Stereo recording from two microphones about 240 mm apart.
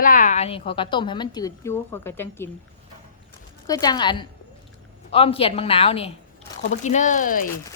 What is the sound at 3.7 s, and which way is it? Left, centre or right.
A woman's voice, centre.